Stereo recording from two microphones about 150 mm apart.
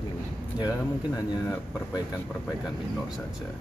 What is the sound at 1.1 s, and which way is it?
Speech, 25° left (ahead or behind).